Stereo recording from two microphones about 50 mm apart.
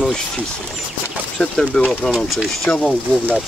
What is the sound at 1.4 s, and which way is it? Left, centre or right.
Speech, left.